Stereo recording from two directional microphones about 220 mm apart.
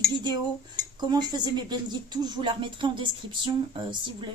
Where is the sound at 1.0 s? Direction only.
20° right (ahead or behind).